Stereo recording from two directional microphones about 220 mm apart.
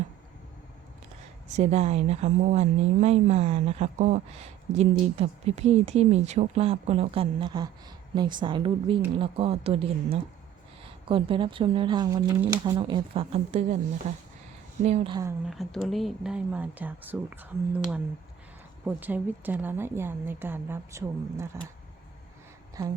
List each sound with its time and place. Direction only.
1.5 s speech: 30° right (ahead or behind)
15.4 s speech: centre (ahead or behind)
18.9 s a woman's voice: 10° right (ahead or behind)
22.8 s a woman's voice: 15° right (ahead or behind)